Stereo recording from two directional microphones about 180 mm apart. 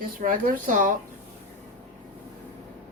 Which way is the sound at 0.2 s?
50° right (ahead or behind).